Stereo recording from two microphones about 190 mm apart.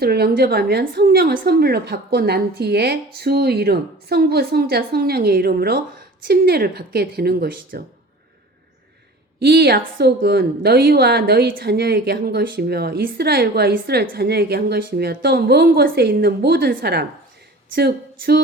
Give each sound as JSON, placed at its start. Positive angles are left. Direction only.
{"t": 0.0, "sound": "a woman's voice", "side_deg": -55}
{"t": 9.4, "sound": "a woman's voice", "side_deg": -55}